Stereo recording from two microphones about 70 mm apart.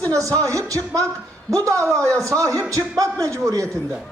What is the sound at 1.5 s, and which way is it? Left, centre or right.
A man's voice, right.